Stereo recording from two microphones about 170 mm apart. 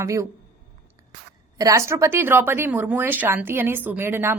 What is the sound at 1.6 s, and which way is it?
Speech, 20° right (ahead or behind).